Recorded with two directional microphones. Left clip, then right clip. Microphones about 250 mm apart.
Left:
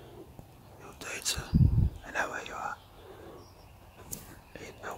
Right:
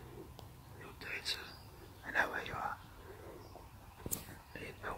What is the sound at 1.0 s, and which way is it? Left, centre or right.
Whispering, centre.